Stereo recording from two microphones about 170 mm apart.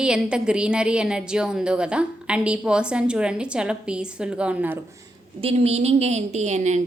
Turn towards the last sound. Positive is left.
turn(degrees=-45)  # may be behind; listen again after turning